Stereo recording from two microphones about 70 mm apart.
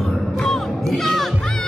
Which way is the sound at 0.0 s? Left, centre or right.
Centre.